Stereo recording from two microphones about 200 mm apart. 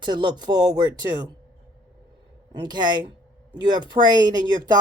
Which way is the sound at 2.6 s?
20° right (ahead or behind).